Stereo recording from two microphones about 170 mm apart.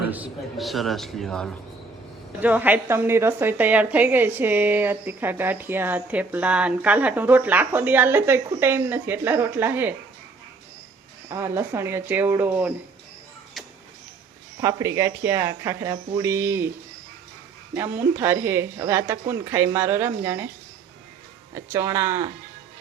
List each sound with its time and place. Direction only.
0.1 s a man's voice: 5° right (ahead or behind)
2.4 s a woman's voice: 10° right (ahead or behind)
11.3 s a woman's voice: 15° right (ahead or behind)
14.6 s a woman's voice: 15° right (ahead or behind)
17.7 s a woman's voice: 10° right (ahead or behind)
21.5 s a woman's voice: 15° right (ahead or behind)